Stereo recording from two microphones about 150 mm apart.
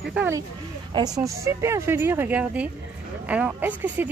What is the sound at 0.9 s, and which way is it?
Speech, 25° right (ahead or behind).